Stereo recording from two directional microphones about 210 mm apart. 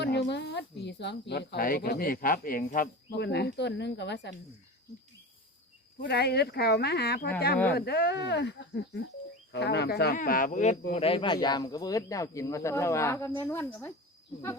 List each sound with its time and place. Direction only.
0.0 s speech: 55° left (ahead or behind)
6.0 s speech: 50° left (ahead or behind); by 13.9 s 10° left (ahead or behind)